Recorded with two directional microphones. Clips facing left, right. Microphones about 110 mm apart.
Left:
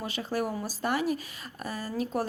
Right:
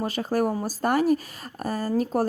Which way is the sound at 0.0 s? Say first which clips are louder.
Right 7 dB; 45° right (ahead or behind).